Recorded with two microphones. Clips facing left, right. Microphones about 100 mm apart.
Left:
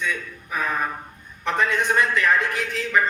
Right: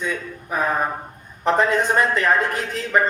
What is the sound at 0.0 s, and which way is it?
A man's voice, 35° right (ahead or behind).